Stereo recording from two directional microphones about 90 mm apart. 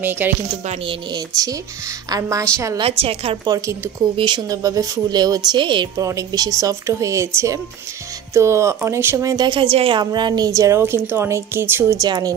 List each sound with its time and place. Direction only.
0.0 s speech: 20° right (ahead or behind)
0.5 s a woman's voice: 65° right (ahead or behind)
1.3 s speech: 40° right (ahead or behind)
2.8 s a woman's voice: 90° right
3.4 s a woman's voice: 35° right (ahead or behind); by 5.9 s 60° right (ahead or behind)
5.9 s speech: 40° right (ahead or behind)
9.3 s a woman's voice: 45° right (ahead or behind)
9.6 s a woman's voice: 85° right; by 10.8 s 40° right (ahead or behind)
10.8 s speech: 25° right (ahead or behind)
12.0 s a woman's voice: 45° right (ahead or behind)